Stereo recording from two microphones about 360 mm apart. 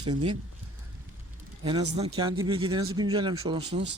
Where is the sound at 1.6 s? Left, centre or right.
Centre.